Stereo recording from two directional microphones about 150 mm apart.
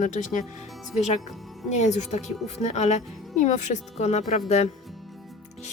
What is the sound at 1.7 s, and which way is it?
A woman's voice, 50° left (ahead or behind).